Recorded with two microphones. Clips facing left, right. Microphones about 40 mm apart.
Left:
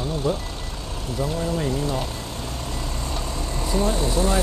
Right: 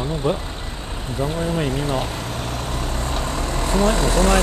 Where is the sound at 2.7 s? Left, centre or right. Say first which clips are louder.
Right 4 dB; right.